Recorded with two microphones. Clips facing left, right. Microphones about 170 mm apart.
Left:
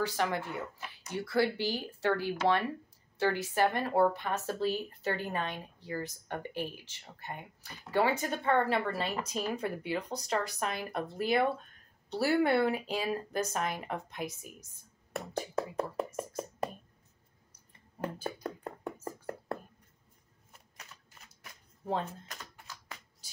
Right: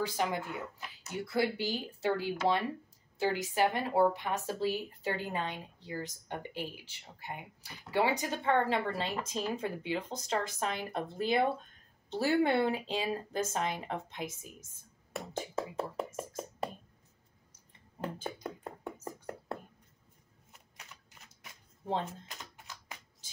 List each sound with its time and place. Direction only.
0.0 s a woman's voice: 15° right (ahead or behind)
15.5 s speech: 5° right (ahead or behind)
18.0 s a sound: 20° right (ahead or behind)
21.8 s typewriter: 20° right (ahead or behind)